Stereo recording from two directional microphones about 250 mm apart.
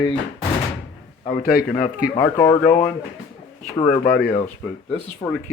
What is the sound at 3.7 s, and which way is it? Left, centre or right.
Speech, left.